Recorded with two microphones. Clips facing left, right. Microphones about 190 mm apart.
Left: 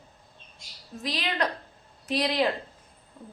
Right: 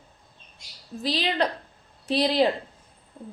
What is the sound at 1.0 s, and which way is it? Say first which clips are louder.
A woman's voice: right 4 dB; 30° right (ahead or behind).